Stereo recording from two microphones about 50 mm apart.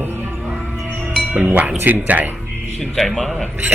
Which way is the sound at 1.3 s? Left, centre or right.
Right.